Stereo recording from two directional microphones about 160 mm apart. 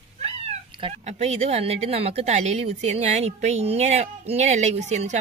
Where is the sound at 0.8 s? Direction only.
35° right (ahead or behind).